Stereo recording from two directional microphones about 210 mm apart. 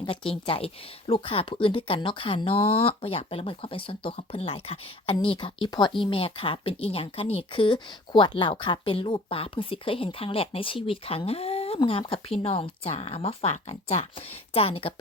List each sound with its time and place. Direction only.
0.3 s speech: 25° left (ahead or behind)